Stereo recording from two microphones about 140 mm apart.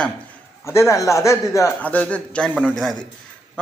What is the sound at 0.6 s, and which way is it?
A man's voice, 20° left (ahead or behind).